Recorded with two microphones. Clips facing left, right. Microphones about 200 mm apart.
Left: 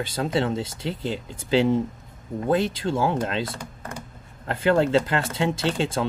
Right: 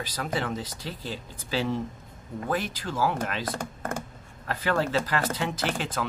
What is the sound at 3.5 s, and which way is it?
Speech, 50° right (ahead or behind).